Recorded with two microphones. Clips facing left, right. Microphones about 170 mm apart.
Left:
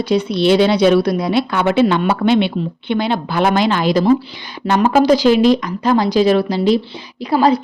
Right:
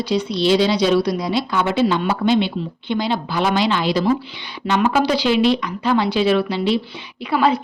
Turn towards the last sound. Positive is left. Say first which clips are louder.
# left 4 dB
turn(degrees=35)  # may be behind; listen again after turning